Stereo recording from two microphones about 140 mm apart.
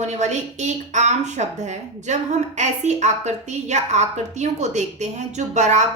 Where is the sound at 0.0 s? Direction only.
55° right (ahead or behind).